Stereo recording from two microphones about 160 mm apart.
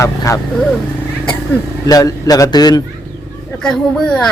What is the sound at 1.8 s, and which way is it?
A man's voice, 20° left (ahead or behind).